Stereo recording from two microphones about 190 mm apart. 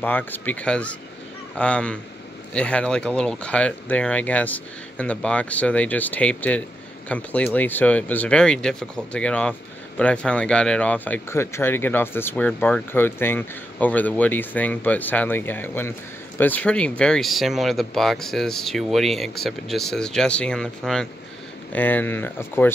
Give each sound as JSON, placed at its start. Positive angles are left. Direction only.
{"t": 0.0, "sound": "speech", "side_deg": 10}